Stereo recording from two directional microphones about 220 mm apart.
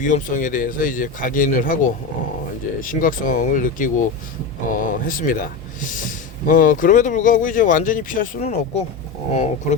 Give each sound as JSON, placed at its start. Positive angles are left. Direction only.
{"t": 0.0, "sound": "speech", "side_deg": 35}